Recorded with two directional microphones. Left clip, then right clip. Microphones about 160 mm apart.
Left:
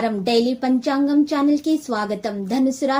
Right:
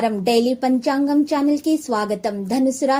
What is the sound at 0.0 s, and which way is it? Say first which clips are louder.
A woman's voice: right 1 dB; 35° right (ahead or behind).